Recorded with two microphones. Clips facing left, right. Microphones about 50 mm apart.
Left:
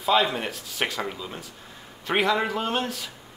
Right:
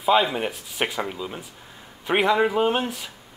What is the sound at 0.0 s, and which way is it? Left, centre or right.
Speech, centre.